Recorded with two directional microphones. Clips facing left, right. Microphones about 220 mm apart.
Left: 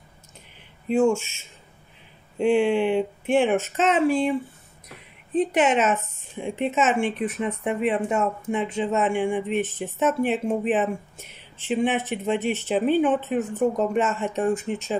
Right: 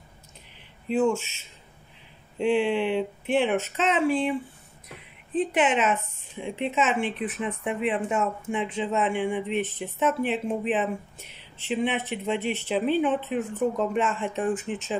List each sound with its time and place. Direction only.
0.8 s speech: 45° left (ahead or behind)
2.3 s speech: 50° left (ahead or behind)
5.3 s speech: 40° left (ahead or behind)